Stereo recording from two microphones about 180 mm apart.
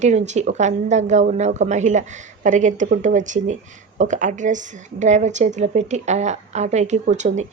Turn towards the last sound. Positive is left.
turn(degrees=-40)  # may be behind; listen again after turning